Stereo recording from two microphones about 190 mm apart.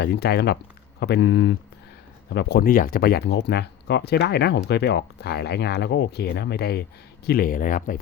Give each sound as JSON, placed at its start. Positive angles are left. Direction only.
{"t": 0.0, "sound": "speech", "side_deg": 60}
{"t": 7.3, "sound": "speech", "side_deg": 50}